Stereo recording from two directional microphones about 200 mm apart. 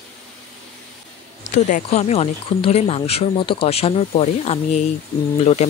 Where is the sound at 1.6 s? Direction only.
35° left (ahead or behind).